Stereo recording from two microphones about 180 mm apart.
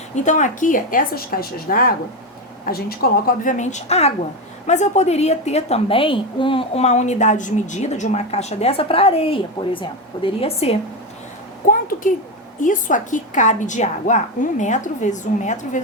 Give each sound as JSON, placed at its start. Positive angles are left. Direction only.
{"t": 0.2, "sound": "a woman's voice", "side_deg": 45}
{"t": 11.6, "sound": "a sound", "side_deg": 50}
{"t": 12.6, "sound": "a woman's voice", "side_deg": 45}